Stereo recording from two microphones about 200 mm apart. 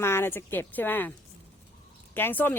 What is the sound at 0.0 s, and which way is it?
A woman's voice, 10° left (ahead or behind).